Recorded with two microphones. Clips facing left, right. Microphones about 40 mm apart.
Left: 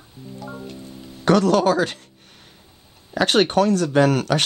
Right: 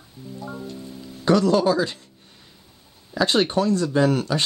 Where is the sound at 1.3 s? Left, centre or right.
Left.